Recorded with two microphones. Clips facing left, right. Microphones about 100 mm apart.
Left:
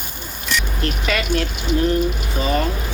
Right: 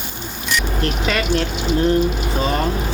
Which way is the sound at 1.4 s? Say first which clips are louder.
Right 2 dB; 30° right (ahead or behind).